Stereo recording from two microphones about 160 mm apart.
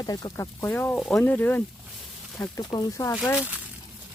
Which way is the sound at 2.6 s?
25° left (ahead or behind).